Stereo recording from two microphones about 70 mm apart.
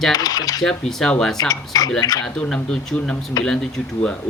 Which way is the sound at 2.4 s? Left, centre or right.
Centre.